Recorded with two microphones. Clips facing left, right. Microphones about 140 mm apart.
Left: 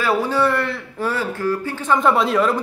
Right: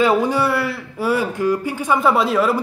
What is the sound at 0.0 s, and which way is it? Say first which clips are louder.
A man's voice: right 2 dB; 15° right (ahead or behind).